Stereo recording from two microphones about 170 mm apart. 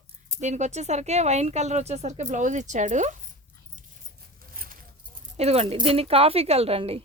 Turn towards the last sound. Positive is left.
turn(degrees=-35)  # may be behind; listen again after turning